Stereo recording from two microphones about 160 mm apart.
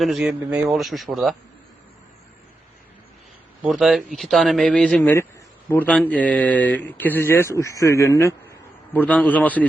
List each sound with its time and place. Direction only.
0.0 s speech: centre (ahead or behind)
3.6 s speech: 5° right (ahead or behind)